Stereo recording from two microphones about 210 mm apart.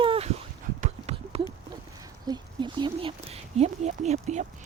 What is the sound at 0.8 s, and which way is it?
Clip-clop, 30° right (ahead or behind).